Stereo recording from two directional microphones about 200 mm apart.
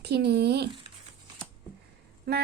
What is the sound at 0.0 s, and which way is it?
Speech, 55° right (ahead or behind).